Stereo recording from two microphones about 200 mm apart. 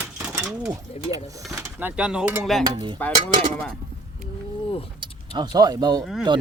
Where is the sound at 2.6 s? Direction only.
20° right (ahead or behind).